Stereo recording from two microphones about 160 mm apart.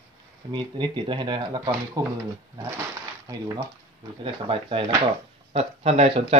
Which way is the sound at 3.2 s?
20° right (ahead or behind).